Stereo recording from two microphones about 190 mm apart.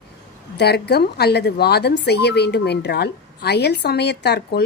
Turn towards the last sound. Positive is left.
turn(degrees=60)  # may be behind; listen again after turning